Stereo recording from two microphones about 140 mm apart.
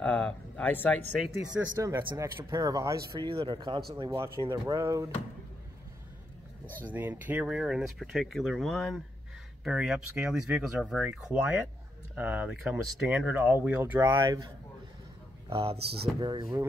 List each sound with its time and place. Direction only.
0.0 s speech: 10° left (ahead or behind)
1.8 s speech: 25° right (ahead or behind)
3.3 s speech: 35° right (ahead or behind)
4.5 s speech: 20° right (ahead or behind)
6.8 s speech: 15° right (ahead or behind)
15.5 s speech: 40° right (ahead or behind)